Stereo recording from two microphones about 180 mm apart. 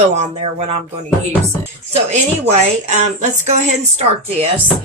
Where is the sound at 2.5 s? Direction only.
40° right (ahead or behind).